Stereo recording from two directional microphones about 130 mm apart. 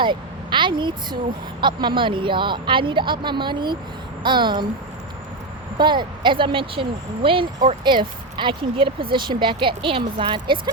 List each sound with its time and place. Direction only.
0.0 s a sound: 40° right (ahead or behind)
1.6 s speech: 35° right (ahead or behind)
5.7 s speech: 35° right (ahead or behind)